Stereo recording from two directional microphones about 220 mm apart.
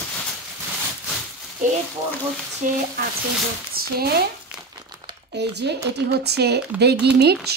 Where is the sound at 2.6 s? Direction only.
35° right (ahead or behind).